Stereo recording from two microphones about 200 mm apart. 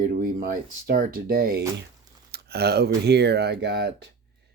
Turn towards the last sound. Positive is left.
turn(degrees=-55)  # may be behind; listen again after turning